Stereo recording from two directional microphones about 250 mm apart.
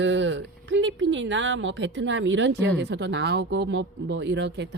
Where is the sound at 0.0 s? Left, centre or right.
Right.